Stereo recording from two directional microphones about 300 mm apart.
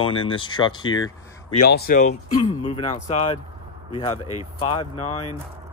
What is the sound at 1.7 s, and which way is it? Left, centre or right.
Speech, left.